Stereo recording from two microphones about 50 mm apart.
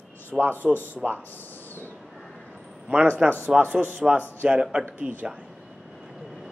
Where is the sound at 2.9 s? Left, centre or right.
Right.